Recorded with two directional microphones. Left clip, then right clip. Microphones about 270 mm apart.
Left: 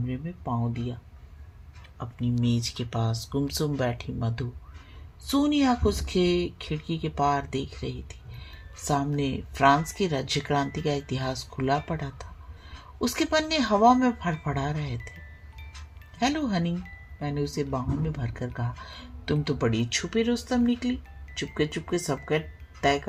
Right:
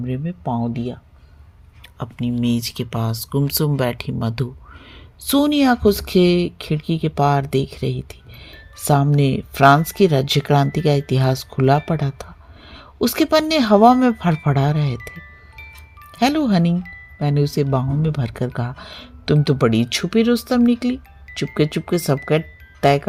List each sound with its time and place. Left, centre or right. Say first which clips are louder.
0.1 s speech: right 8 dB; right
2.0 s speech: right 7 dB; right
16.1 s speech: right 9 dB; right